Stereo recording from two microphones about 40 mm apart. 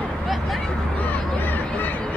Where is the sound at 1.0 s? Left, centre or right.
Left.